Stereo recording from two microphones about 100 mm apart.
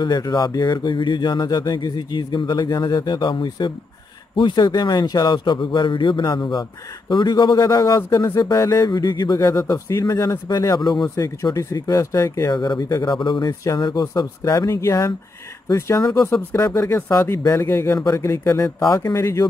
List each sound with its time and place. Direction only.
0.0 s speech: 45° left (ahead or behind)
9.9 s speech: 30° left (ahead or behind)
12.5 s speech: 45° left (ahead or behind); by 19.4 s 30° left (ahead or behind)